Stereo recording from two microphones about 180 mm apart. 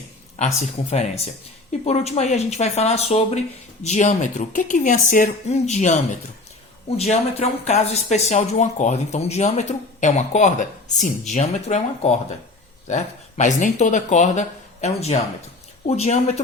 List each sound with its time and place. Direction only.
0.3 s speech: 40° left (ahead or behind)